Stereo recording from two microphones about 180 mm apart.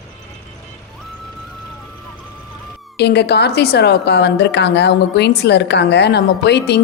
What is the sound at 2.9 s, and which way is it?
A woman's voice, 65° left (ahead or behind).